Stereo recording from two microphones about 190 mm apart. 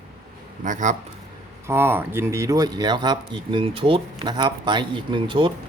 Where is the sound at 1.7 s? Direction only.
10° right (ahead or behind).